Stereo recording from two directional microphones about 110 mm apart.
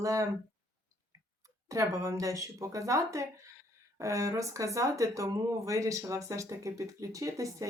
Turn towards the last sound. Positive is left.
turn(degrees=-30)  # may be behind; listen again after turning